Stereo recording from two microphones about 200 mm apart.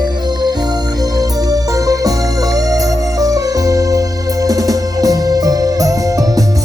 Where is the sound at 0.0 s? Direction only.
20° right (ahead or behind).